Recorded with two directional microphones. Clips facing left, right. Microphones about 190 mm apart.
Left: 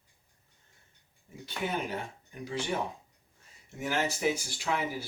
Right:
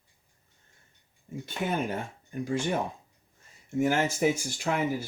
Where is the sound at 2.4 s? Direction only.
50° right (ahead or behind).